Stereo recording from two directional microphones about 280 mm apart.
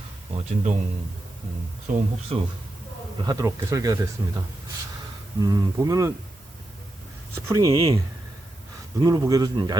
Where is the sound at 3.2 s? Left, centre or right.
Centre.